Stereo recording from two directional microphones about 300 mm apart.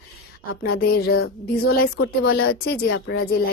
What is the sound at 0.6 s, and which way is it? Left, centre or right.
Speech, left.